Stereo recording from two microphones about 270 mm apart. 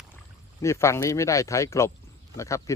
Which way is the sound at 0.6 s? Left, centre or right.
Centre.